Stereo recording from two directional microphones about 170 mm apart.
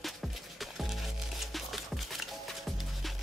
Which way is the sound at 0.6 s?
Centre (ahead or behind).